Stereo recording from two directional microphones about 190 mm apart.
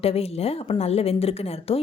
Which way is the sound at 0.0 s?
30° left (ahead or behind).